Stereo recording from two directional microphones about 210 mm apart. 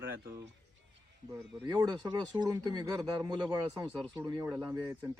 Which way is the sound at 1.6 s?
20° right (ahead or behind).